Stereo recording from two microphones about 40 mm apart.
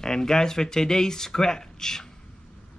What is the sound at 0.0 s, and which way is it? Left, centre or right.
Speech, centre.